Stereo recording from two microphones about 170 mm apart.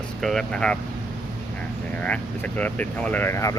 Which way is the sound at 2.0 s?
10° left (ahead or behind).